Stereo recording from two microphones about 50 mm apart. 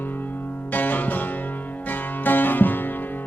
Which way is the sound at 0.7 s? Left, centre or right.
Left.